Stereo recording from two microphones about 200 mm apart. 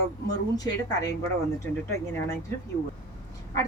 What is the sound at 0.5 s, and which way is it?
Speech, 20° left (ahead or behind).